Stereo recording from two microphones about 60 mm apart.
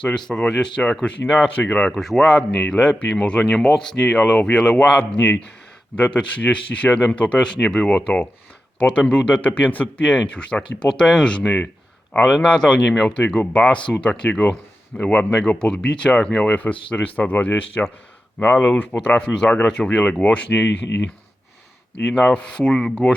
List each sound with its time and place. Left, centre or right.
0.0 s speech: centre
1.0 s speech: left
2.0 s speech: centre; by 18.9 s left
19.2 s speech: centre
22.0 s speech: centre